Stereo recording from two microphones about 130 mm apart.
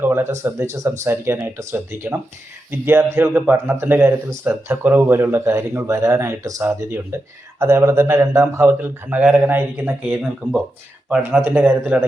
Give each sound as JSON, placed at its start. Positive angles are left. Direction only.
{"t": 0.0, "sound": "a man's voice", "side_deg": -20}